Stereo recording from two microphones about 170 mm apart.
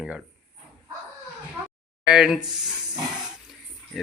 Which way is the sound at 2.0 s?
5° right (ahead or behind).